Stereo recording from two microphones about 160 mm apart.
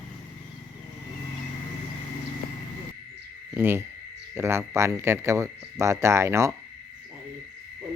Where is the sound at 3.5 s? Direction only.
15° right (ahead or behind).